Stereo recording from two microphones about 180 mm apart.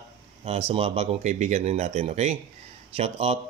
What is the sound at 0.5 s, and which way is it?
Speech, 35° right (ahead or behind).